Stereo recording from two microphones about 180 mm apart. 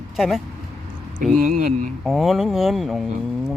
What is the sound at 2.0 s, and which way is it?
Speech, centre (ahead or behind).